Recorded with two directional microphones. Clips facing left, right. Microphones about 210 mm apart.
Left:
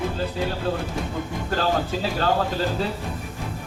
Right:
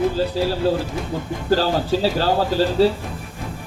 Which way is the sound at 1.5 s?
30° right (ahead or behind).